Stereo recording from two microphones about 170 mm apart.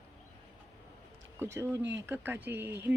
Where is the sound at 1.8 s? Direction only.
90° right.